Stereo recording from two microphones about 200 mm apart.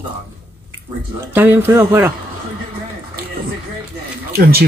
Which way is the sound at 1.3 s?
10° right (ahead or behind).